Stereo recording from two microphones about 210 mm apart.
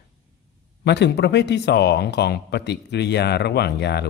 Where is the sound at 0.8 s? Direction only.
55° left (ahead or behind).